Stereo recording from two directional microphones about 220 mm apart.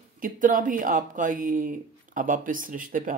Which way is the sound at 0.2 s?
40° right (ahead or behind).